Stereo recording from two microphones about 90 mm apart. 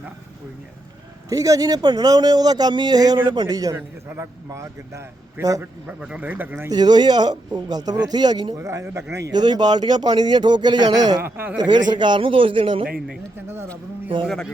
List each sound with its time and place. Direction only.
1.3 s a man's voice: 40° right (ahead or behind)
3.8 s a man's voice: 25° right (ahead or behind)
5.9 s speech: 15° right (ahead or behind)
6.7 s a man's voice: 50° right (ahead or behind)
8.5 s a man's voice: 35° right (ahead or behind)
9.3 s a man's voice: 50° right (ahead or behind)
11.2 s speech: 25° right (ahead or behind)
11.5 s a man's voice: 55° right (ahead or behind); by 12.8 s 80° right